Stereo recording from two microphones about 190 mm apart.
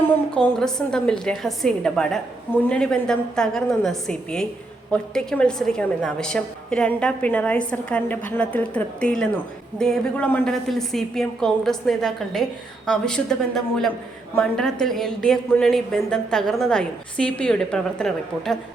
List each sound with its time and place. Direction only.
0.3 s a woman's voice: 5° left (ahead or behind)